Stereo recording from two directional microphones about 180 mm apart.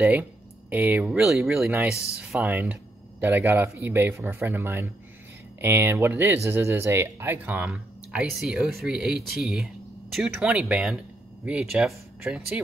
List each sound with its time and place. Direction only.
0.0 s speech: 10° right (ahead or behind)